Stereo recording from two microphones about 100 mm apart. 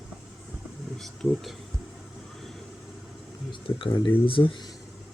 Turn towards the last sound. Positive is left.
turn(degrees=60)  # may be behind; listen again after turning